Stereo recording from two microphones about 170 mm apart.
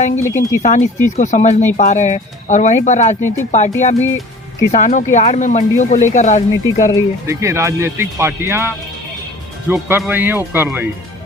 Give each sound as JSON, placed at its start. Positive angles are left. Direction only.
{"t": 0.0, "sound": "speech", "side_deg": 45}
{"t": 7.3, "sound": "speech", "side_deg": -15}